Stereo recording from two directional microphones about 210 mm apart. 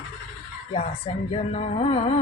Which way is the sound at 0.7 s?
30° left (ahead or behind).